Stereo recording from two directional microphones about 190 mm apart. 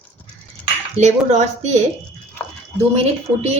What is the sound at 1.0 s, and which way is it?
Speech, 35° right (ahead or behind).